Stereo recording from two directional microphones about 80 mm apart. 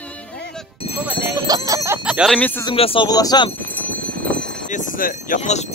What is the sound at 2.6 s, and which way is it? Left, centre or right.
Speech, left.